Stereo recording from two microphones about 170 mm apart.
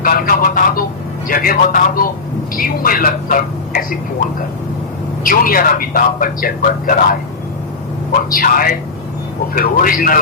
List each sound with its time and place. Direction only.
0.0 s a sound: 55° left (ahead or behind)
1.3 s a man's voice: 55° left (ahead or behind)
5.2 s a man's voice: 55° left (ahead or behind)
8.3 s a man's voice: 55° left (ahead or behind)